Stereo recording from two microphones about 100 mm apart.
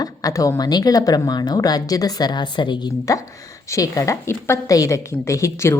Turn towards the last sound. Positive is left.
turn(degrees=30)  # may be behind; listen again after turning